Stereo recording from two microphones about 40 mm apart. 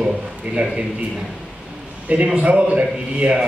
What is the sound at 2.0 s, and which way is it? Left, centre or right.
Speech, right.